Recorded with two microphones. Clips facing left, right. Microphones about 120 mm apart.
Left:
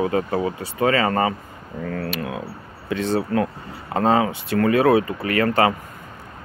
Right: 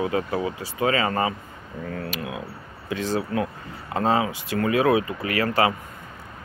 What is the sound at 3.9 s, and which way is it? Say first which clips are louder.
Speech: left 4 dB; 40° left (ahead or behind).